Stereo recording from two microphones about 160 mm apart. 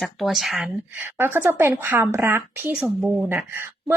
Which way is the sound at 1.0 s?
15° right (ahead or behind).